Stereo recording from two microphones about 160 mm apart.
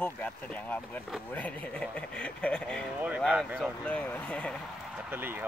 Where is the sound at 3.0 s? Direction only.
5° right (ahead or behind).